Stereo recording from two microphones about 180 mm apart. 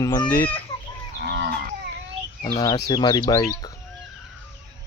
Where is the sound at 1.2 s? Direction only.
70° right (ahead or behind).